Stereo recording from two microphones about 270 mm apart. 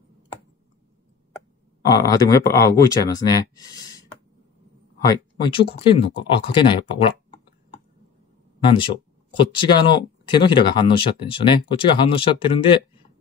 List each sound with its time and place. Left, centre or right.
1.9 s speech: centre
5.0 s speech: centre
9.4 s speech: centre